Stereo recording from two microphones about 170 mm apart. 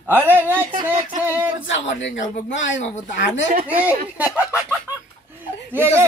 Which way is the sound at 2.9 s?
50° left (ahead or behind).